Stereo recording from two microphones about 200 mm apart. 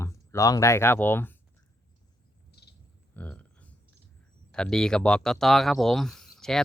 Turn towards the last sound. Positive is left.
turn(degrees=0)  # may be behind; listen again after turning